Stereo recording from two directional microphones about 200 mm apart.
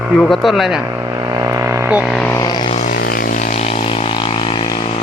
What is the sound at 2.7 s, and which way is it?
Vehicle, 40° left (ahead or behind).